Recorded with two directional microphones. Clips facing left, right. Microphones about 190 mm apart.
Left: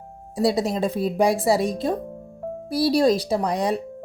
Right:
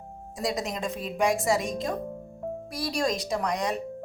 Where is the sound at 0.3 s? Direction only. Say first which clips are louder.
Left 9 dB; 30° left (ahead or behind).